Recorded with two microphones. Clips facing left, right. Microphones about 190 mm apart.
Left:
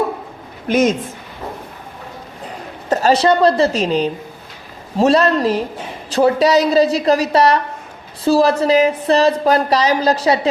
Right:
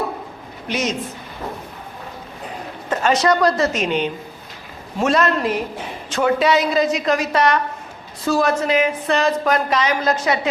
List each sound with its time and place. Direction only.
0.7 s a woman's voice: 50° left (ahead or behind)
2.9 s a woman's voice: 35° left (ahead or behind)